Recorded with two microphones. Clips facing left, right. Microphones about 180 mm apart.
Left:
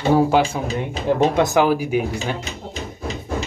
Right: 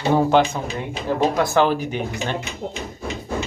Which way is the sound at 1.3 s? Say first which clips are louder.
Left 2 dB; 20° left (ahead or behind).